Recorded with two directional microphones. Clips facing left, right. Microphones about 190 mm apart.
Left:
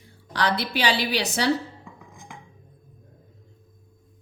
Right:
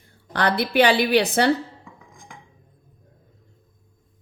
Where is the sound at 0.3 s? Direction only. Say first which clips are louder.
Right 6 dB; 55° right (ahead or behind).